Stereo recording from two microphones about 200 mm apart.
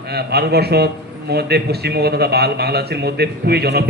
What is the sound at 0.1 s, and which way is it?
Speech, 55° right (ahead or behind).